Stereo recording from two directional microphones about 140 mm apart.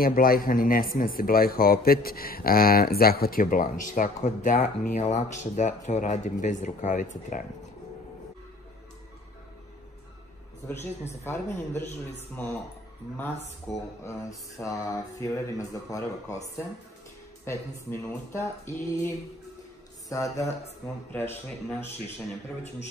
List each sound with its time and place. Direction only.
0.0 s speech: 90° left; by 7.4 s 65° left (ahead or behind)
11.2 s a man's voice: 15° left (ahead or behind)
13.7 s speech: centre (ahead or behind)
14.6 s speech: 20° left (ahead or behind)
17.5 s a man's voice: 20° left (ahead or behind)